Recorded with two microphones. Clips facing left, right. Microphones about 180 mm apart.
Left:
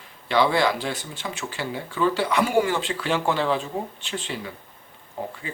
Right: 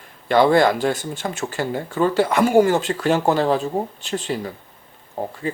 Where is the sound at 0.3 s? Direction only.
50° right (ahead or behind).